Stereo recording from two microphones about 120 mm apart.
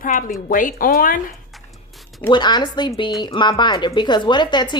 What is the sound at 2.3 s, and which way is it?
A woman's voice, 40° left (ahead or behind).